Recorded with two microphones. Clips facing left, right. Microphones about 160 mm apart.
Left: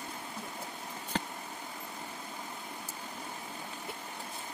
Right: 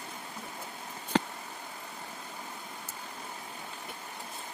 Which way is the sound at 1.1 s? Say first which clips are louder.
Right 8 dB; 90° right.